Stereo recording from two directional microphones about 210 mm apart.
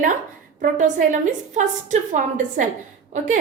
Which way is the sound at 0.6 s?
35° right (ahead or behind).